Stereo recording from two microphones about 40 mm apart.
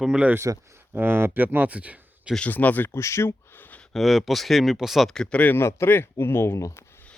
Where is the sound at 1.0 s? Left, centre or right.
Right.